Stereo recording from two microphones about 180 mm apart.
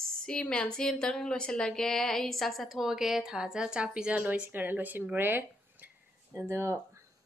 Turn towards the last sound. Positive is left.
turn(degrees=-15)  # may be behind; listen again after turning